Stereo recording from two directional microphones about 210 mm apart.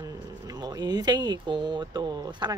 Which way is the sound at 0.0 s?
15° right (ahead or behind).